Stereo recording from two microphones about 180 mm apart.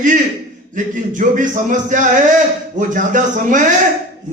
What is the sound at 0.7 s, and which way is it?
A man's voice, 45° right (ahead or behind).